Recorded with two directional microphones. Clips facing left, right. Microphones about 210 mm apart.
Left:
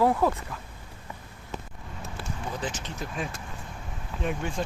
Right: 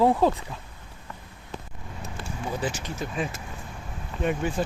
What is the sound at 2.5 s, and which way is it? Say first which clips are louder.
Speech: right 6 dB; 10° right (ahead or behind).